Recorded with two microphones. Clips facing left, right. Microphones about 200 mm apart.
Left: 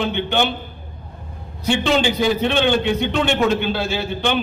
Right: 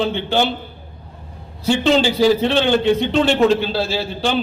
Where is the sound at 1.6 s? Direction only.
35° right (ahead or behind).